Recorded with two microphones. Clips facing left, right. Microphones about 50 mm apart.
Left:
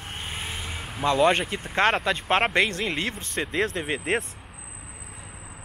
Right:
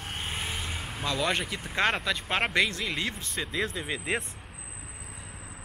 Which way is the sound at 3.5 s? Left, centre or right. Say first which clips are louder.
Left 5 dB; left.